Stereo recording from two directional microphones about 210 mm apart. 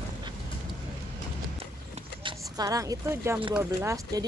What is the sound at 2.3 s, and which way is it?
A woman's voice, 15° right (ahead or behind).